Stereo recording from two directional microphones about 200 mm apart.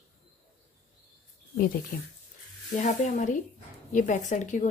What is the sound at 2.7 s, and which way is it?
A woman's voice, 40° left (ahead or behind).